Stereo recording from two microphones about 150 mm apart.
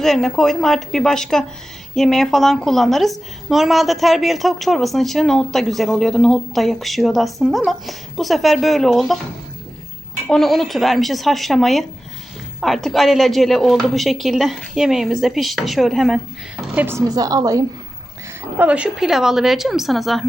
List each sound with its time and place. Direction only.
0.0 s a woman's voice: centre (ahead or behind)
10.2 s a woman's voice: 5° left (ahead or behind)
16.8 s a woman's voice: 20° right (ahead or behind)
18.5 s a woman's voice: 10° right (ahead or behind)